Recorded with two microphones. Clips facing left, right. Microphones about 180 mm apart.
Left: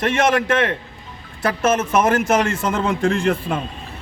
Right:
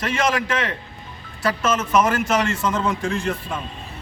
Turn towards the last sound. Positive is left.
turn(degrees=60)  # may be behind; listen again after turning